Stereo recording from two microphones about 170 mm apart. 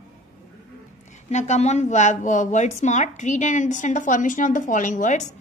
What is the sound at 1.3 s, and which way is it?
A woman's voice, 40° left (ahead or behind).